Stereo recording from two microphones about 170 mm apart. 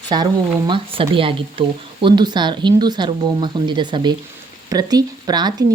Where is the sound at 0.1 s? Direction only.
25° right (ahead or behind).